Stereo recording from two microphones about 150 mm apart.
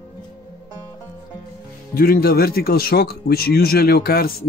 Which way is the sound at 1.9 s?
85° left.